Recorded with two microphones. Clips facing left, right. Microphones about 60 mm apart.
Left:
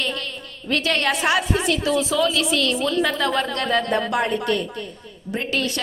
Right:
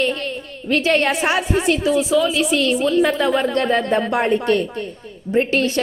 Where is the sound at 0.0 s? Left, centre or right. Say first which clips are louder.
Right 6 dB; right.